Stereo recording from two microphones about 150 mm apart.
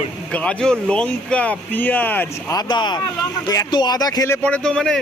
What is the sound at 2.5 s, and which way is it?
Speech, 30° left (ahead or behind).